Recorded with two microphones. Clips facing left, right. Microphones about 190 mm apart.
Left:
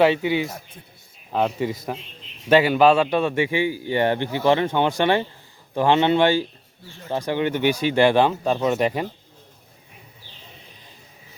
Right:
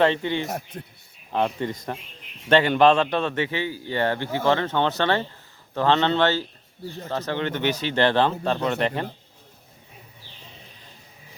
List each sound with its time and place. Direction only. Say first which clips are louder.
0.0 s speech: left 3 dB; 10° left (ahead or behind)
0.4 s speech: right 3 dB; 65° right (ahead or behind)
1.3 s speech: left 2 dB; 5° left (ahead or behind)
6.8 s speech: right 8 dB; 40° right (ahead or behind)
7.1 s speech: left 4 dB; 15° left (ahead or behind)